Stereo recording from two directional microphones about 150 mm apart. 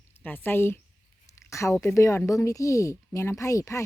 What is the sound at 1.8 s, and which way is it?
Speech, 20° left (ahead or behind).